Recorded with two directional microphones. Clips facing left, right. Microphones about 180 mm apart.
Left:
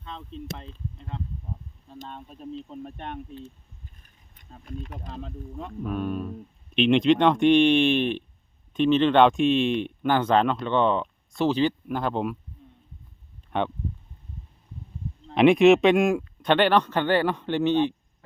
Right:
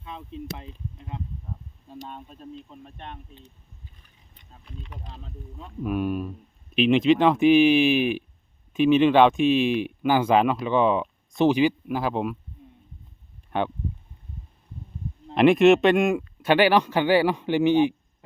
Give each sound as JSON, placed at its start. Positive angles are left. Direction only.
{"t": 0.0, "sound": "a man's voice", "side_deg": -10}
{"t": 4.0, "sound": "speech", "side_deg": 45}
{"t": 5.8, "sound": "a man's voice", "side_deg": -10}
{"t": 13.5, "sound": "speech", "side_deg": 0}
{"t": 15.4, "sound": "a man's voice", "side_deg": 0}